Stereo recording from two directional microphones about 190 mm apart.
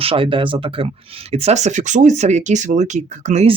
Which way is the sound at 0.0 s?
30° right (ahead or behind).